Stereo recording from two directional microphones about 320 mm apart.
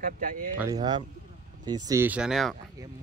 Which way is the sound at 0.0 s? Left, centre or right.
Right.